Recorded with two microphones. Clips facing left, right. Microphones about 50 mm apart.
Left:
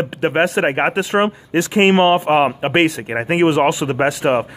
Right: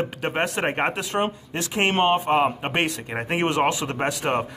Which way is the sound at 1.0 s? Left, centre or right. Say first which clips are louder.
Left 8 dB; left.